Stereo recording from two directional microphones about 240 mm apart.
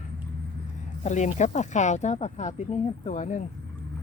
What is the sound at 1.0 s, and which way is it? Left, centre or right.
Speech, left.